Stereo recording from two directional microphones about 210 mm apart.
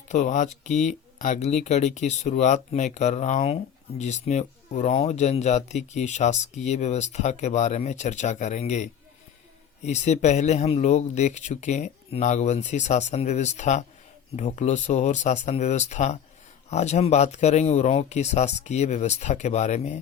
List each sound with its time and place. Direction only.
0.1 s speech: 35° left (ahead or behind)